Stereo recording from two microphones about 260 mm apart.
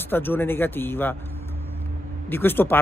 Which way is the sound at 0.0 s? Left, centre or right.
Centre.